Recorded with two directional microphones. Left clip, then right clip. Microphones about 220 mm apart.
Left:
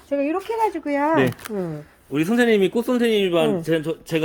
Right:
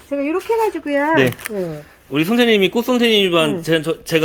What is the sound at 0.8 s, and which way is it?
Speech, 45° left (ahead or behind).